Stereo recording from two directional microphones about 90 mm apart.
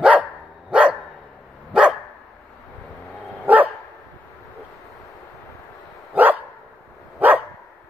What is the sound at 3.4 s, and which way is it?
Dog, 20° right (ahead or behind).